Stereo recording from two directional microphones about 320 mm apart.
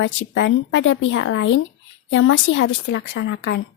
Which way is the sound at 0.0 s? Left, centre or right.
Left.